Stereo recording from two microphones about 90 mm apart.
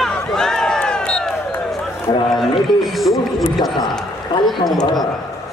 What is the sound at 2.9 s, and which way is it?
Speech, centre (ahead or behind).